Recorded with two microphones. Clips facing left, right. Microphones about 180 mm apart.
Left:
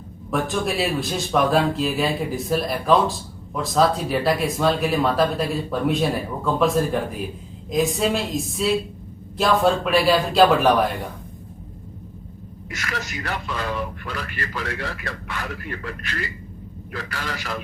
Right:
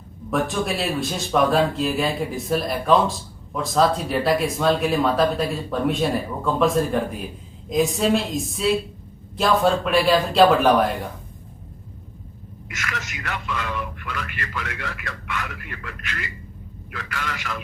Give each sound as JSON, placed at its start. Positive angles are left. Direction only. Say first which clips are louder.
{"t": 0.3, "sound": "speech", "louder": "even", "side_deg": 0}
{"t": 12.7, "sound": "speech", "louder": "left 3 dB", "side_deg": 35}